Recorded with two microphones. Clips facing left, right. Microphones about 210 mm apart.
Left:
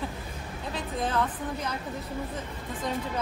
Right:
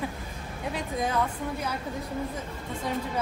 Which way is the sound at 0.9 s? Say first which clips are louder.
Even; 10° right (ahead or behind).